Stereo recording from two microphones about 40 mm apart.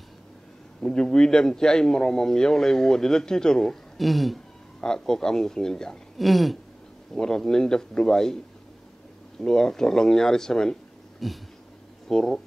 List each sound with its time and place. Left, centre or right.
0.8 s a man's voice: left
4.0 s speech: centre
4.7 s a man's voice: centre
6.1 s speech: centre
7.2 s a man's voice: centre
9.4 s a man's voice: centre
11.2 s speech: centre
12.1 s a man's voice: centre